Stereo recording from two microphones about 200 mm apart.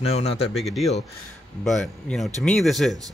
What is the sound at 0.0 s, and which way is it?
Speech, 30° left (ahead or behind).